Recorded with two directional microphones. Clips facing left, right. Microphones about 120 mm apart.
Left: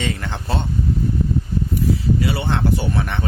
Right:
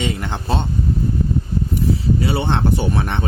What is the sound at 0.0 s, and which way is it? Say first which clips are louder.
Speech: right 2 dB; 20° right (ahead or behind).